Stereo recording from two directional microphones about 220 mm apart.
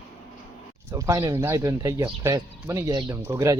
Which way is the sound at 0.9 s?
15° right (ahead or behind).